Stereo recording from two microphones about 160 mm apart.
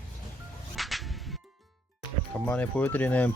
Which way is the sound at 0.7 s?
Centre (ahead or behind).